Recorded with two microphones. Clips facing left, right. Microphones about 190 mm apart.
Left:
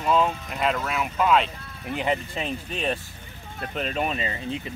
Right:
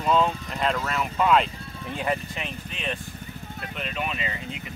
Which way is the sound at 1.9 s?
20° left (ahead or behind).